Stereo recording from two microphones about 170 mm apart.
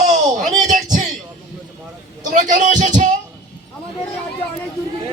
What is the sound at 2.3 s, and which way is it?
Speech, 45° right (ahead or behind).